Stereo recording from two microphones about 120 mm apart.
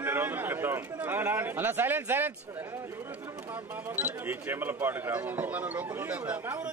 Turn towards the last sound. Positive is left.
turn(degrees=-10)  # may be behind; listen again after turning